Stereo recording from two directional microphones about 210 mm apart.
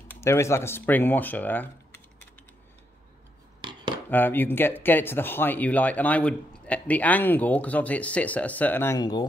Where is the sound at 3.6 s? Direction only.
20° right (ahead or behind).